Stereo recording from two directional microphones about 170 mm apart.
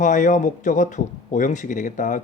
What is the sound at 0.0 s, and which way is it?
Speech, 45° left (ahead or behind).